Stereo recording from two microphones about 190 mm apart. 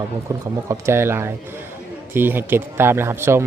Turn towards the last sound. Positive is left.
turn(degrees=-15)  # may be behind; listen again after turning